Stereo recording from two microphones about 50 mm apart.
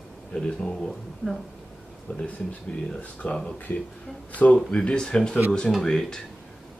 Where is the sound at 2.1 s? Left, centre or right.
Left.